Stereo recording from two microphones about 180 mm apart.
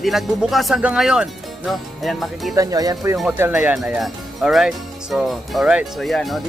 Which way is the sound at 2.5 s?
20° right (ahead or behind).